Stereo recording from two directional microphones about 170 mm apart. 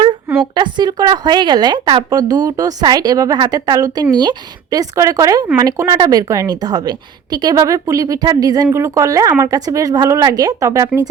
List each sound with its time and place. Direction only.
0.5 s a woman's voice: 25° right (ahead or behind)